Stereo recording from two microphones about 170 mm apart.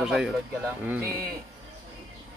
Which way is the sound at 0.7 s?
15° right (ahead or behind).